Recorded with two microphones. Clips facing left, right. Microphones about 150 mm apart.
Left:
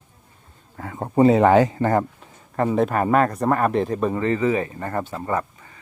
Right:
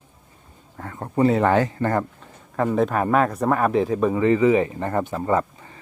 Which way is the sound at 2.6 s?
5° left (ahead or behind).